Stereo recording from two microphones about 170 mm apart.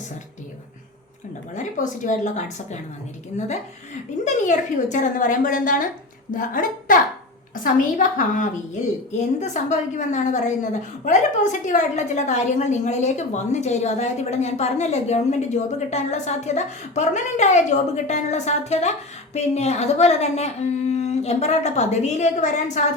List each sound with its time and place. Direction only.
1.5 s a woman's voice: 45° left (ahead or behind)
4.4 s a woman's voice: 45° left (ahead or behind)